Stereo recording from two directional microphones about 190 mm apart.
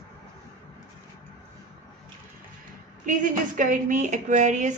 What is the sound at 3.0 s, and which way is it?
A woman's voice, 45° right (ahead or behind).